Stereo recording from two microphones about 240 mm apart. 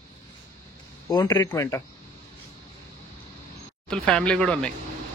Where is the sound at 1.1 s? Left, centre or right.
Centre.